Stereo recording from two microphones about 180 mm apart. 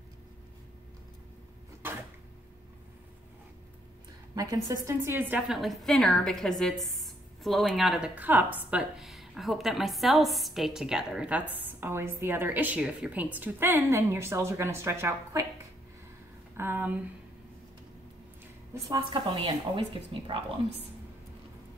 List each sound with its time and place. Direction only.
1.8 s a sound: 10° right (ahead or behind)
4.4 s a woman's voice: 20° right (ahead or behind)
16.5 s a woman's voice: 10° right (ahead or behind)
18.9 s a woman's voice: 25° right (ahead or behind)